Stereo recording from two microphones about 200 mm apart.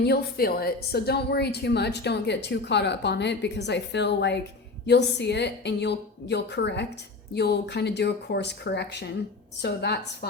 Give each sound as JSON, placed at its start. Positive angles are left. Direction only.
{"t": 0.0, "sound": "a woman's voice", "side_deg": 55}